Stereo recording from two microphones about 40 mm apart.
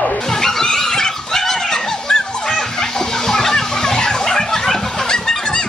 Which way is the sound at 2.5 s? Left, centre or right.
Centre.